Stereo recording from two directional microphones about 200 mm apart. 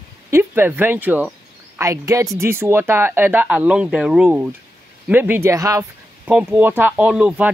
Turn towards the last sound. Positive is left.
turn(degrees=-5)  # may be behind; listen again after turning